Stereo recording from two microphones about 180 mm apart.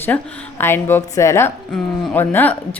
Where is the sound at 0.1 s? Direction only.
15° left (ahead or behind).